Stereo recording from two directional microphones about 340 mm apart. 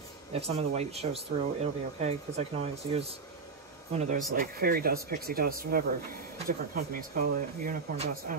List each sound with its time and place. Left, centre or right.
0.3 s speech: centre